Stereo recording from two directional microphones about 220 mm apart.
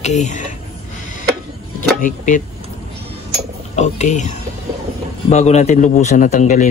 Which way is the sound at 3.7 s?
30° left (ahead or behind).